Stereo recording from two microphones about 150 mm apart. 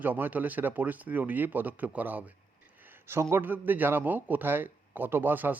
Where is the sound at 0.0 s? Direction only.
10° right (ahead or behind).